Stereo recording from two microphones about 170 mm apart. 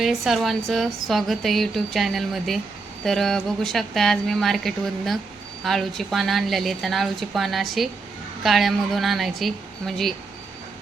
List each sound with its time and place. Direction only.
0.0 s a woman's voice: centre (ahead or behind)